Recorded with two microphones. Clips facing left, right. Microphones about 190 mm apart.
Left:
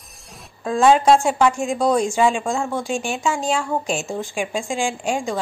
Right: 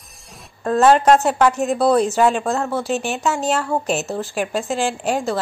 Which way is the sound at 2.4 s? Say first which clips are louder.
Right 2 dB; 10° left (ahead or behind).